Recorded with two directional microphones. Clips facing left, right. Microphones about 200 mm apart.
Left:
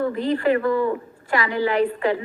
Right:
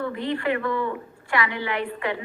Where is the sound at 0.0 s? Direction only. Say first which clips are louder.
Left 5 dB; 40° left (ahead or behind).